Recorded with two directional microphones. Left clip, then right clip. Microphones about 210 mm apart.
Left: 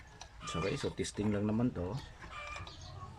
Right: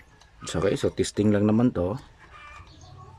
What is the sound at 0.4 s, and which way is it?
Speech, 50° right (ahead or behind).